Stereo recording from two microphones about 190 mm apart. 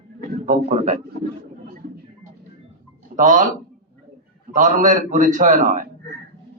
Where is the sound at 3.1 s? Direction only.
40° right (ahead or behind).